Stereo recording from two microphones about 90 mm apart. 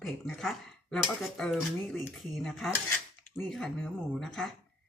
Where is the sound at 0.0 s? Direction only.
5° left (ahead or behind).